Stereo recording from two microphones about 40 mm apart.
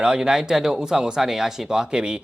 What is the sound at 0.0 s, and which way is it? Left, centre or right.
Speech, centre.